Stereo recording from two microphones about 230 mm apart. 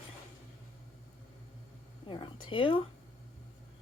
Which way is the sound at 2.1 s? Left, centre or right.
Left.